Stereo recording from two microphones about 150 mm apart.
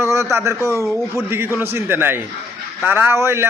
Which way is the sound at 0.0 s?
20° right (ahead or behind).